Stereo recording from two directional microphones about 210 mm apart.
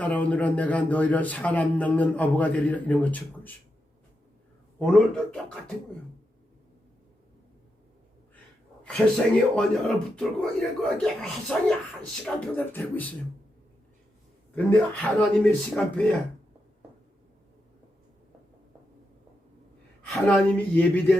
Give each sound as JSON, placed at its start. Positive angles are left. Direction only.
{"t": 0.0, "sound": "a man's voice", "side_deg": 5}
{"t": 4.8, "sound": "speech", "side_deg": 5}
{"t": 8.8, "sound": "a man's voice", "side_deg": 5}
{"t": 15.2, "sound": "speech", "side_deg": 5}
{"t": 20.0, "sound": "a man's voice", "side_deg": 5}